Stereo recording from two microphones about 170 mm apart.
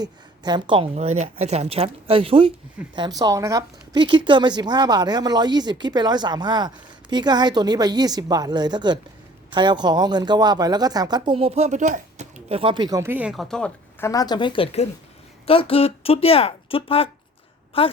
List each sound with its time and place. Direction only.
0.0 s a woman's voice: 25° right (ahead or behind)
13.0 s speech: 10° right (ahead or behind)
14.0 s a woman's voice: 20° left (ahead or behind)